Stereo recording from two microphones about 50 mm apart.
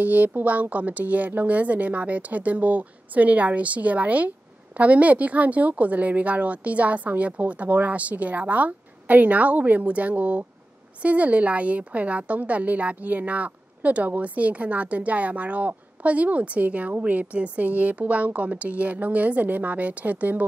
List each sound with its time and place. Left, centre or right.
0.0 s a woman's voice: right